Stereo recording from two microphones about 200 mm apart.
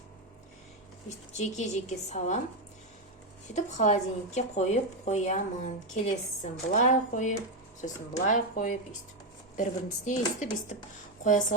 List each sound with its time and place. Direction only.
1.3 s a woman's voice: 35° left (ahead or behind)
3.5 s a woman's voice: 35° left (ahead or behind)